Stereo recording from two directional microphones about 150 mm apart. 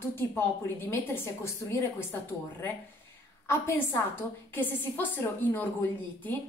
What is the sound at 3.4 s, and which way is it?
A woman's voice, 15° left (ahead or behind).